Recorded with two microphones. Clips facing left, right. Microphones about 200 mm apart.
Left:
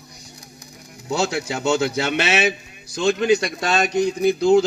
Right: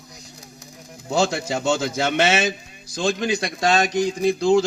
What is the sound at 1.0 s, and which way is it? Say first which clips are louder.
Speech: right 1 dB; 65° left (ahead or behind).